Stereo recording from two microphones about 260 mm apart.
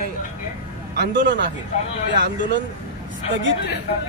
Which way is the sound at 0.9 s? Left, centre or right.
Right.